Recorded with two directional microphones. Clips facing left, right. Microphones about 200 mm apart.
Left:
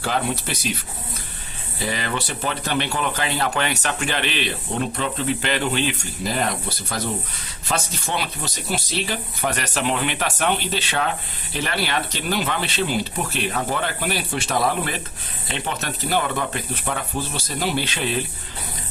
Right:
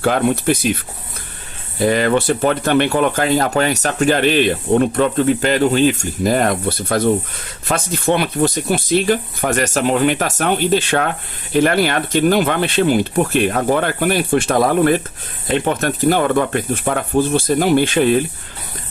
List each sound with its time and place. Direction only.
0.0 s speech: 55° right (ahead or behind)
1.8 s speech: 50° right (ahead or behind)